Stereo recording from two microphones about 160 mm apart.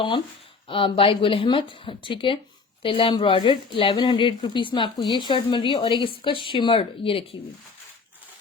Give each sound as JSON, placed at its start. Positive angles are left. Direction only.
{"t": 0.7, "sound": "a woman's voice", "side_deg": 35}